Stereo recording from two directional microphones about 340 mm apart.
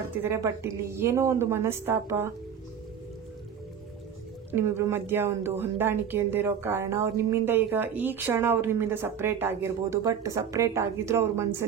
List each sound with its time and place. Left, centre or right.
0.2 s speech: centre
4.5 s speech: centre